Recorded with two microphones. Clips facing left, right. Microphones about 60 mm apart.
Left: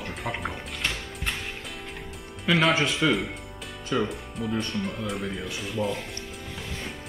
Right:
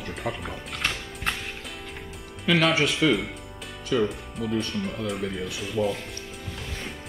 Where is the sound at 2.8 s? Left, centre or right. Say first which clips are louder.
Right 2 dB; centre.